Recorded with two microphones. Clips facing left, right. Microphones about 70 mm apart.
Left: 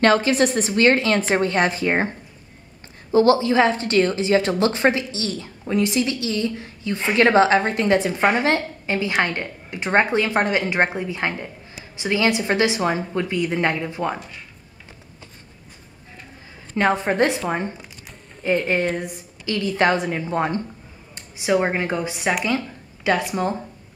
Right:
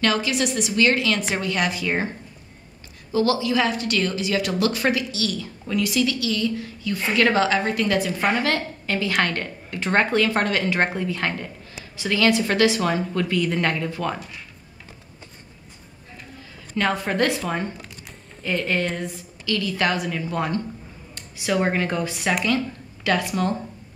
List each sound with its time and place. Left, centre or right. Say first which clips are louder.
0.0 s a woman's voice: left 6 dB; left
16.7 s a woman's voice: left 3 dB; left